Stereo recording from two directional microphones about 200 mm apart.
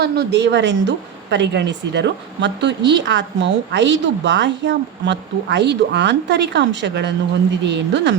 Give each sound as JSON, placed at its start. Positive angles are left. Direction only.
{"t": 0.0, "sound": "a woman's voice", "side_deg": -55}